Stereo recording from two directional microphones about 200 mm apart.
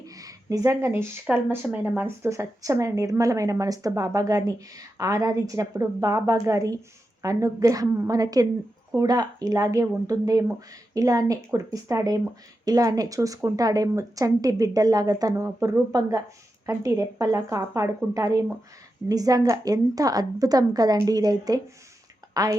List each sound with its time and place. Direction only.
0.0 s a woman's voice: 15° right (ahead or behind)